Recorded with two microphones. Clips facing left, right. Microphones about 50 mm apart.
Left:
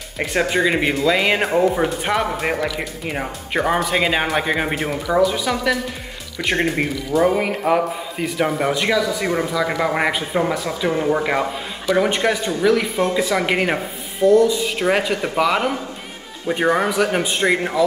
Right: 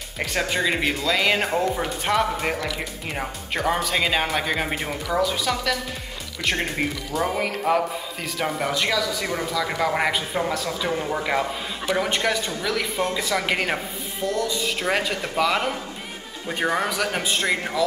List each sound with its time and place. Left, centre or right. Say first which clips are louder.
0.2 s a man's voice: left 5 dB; centre